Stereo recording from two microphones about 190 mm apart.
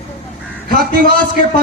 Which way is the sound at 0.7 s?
55° right (ahead or behind).